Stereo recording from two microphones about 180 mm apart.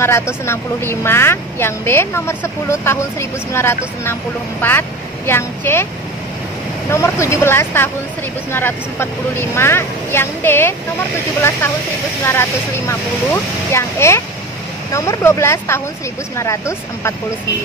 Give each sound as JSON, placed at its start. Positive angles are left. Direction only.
{"t": 0.0, "sound": "a woman's voice", "side_deg": 15}
{"t": 6.9, "sound": "a woman's voice", "side_deg": 15}
{"t": 12.3, "sound": "a woman's voice", "side_deg": 15}